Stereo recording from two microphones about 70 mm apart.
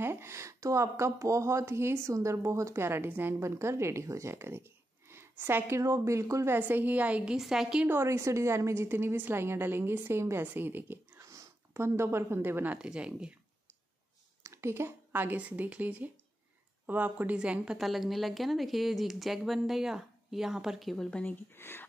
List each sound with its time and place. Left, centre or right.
0.0 s a woman's voice: right
3.3 s a woman's voice: right
6.5 s a woman's voice: right
7.3 s speech: centre
7.9 s a woman's voice: right
11.1 s a sound: right
12.4 s a woman's voice: right
12.6 s speech: centre
14.4 s a woman's voice: right
17.4 s speech: centre
17.7 s a woman's voice: centre
21.1 s speech: left
21.5 s speech: left